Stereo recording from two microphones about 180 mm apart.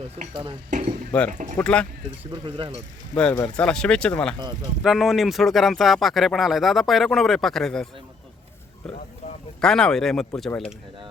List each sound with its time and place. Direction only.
0.2 s speech: 30° right (ahead or behind)
1.3 s speech: 45° right (ahead or behind)
1.5 s speech: 5° left (ahead or behind)
2.3 s speech: 25° right (ahead or behind)
3.2 s speech: 5° left (ahead or behind)
4.4 s speech: 20° right (ahead or behind)
4.8 s speech: centre (ahead or behind)
9.6 s speech: 5° left (ahead or behind)